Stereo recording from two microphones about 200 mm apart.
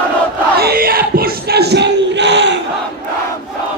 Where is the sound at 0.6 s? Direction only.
50° right (ahead or behind).